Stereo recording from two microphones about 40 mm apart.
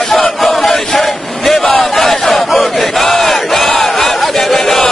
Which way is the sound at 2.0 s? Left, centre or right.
Centre.